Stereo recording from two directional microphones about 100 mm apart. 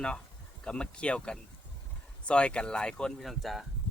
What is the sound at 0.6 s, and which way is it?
Speech, 10° left (ahead or behind).